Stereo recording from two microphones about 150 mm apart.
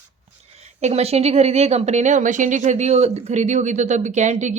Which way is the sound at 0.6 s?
50° right (ahead or behind).